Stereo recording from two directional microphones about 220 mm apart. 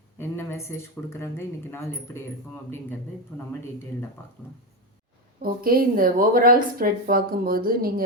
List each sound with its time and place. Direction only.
0.2 s speech: 10° left (ahead or behind)
3.3 s speech: 10° left (ahead or behind)
5.4 s a woman's voice: 40° right (ahead or behind)